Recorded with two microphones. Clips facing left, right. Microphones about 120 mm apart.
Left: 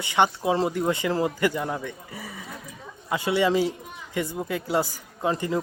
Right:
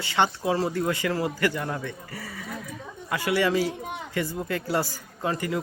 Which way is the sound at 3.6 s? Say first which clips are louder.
Left 1 dB; 80° right.